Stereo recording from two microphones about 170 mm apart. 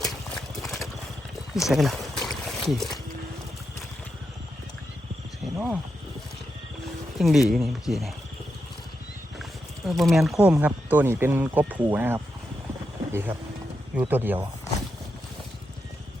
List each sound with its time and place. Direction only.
0.5 s horse: centre (ahead or behind)
1.6 s boat: centre (ahead or behind)
5.5 s speech: 10° right (ahead or behind)
7.2 s speech: centre (ahead or behind)
9.8 s speech: centre (ahead or behind)
13.1 s a sound: 15° right (ahead or behind)
13.9 s speech: 10° right (ahead or behind)